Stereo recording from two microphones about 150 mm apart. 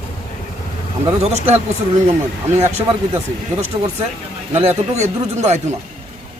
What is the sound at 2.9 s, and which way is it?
Speech, 35° right (ahead or behind).